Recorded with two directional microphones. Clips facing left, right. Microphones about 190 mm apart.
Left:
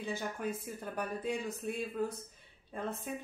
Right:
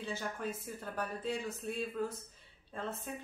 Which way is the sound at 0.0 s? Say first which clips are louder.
Left 2 dB; 15° left (ahead or behind).